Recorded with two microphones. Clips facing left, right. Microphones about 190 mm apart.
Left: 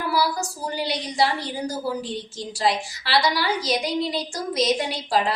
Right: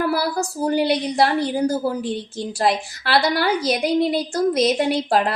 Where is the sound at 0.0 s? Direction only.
55° right (ahead or behind).